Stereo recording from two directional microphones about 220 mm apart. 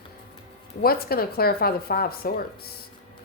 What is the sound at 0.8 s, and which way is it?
A woman's voice, 45° left (ahead or behind).